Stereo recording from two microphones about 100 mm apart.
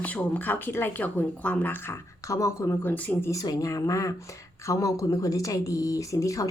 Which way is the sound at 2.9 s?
15° left (ahead or behind).